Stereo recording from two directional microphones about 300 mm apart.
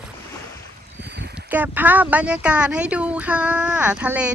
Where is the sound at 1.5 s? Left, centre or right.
Centre.